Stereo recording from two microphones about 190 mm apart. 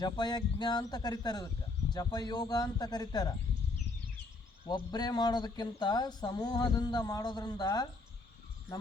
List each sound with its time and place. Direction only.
0.0 s speech: 20° left (ahead or behind)
4.7 s speech: 20° left (ahead or behind)